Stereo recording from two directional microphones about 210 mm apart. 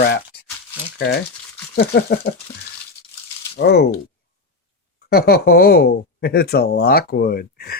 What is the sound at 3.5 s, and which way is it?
Speech, 50° left (ahead or behind).